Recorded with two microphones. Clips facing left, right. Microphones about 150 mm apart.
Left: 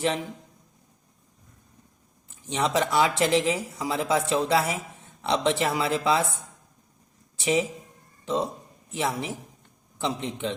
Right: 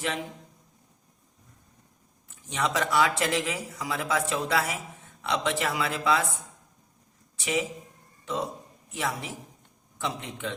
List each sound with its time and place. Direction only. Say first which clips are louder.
2.5 s speech: left 3 dB; 25° left (ahead or behind)
7.3 s speech: left 4 dB; 30° left (ahead or behind)